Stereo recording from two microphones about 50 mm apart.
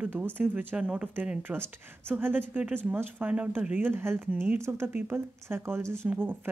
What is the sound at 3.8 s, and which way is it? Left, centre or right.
A woman's voice, right.